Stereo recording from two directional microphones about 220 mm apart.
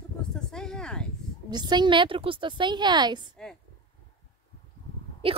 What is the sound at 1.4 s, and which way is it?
A woman's voice, 20° right (ahead or behind).